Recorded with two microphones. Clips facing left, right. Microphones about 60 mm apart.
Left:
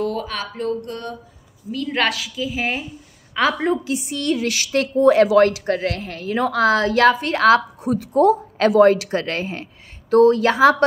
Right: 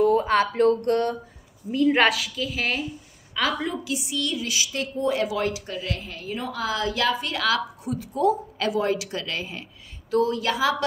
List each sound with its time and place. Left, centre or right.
0.3 s a sound: right
1.9 s a woman's voice: centre
3.3 s a woman's voice: left